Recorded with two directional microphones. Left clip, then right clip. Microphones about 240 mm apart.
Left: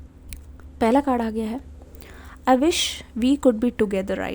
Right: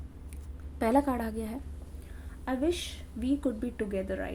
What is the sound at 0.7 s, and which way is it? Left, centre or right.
Speech, left.